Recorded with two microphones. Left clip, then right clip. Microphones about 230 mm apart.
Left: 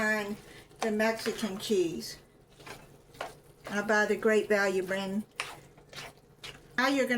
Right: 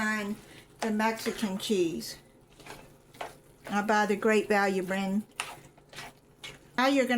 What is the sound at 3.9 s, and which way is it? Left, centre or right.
Speech, right.